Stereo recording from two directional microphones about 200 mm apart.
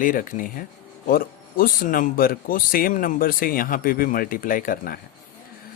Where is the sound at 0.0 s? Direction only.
45° left (ahead or behind).